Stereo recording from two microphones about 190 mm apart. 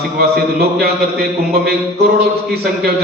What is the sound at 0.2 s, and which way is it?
A man's voice, 55° right (ahead or behind).